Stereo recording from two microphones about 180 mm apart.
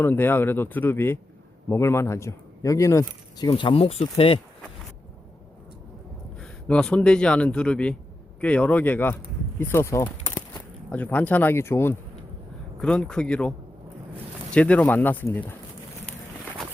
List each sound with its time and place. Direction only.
0.0 s speech: 10° left (ahead or behind); by 4.4 s 30° left (ahead or behind)
6.4 s speech: 5° left (ahead or behind)
14.5 s speech: 5° left (ahead or behind)